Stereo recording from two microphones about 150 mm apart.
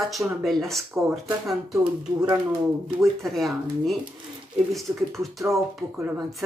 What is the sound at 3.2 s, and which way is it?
Speech, centre (ahead or behind).